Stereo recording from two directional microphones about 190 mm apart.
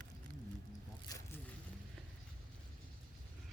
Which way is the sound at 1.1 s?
20° left (ahead or behind).